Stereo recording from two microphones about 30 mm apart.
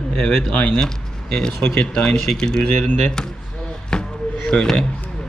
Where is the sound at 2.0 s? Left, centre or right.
Centre.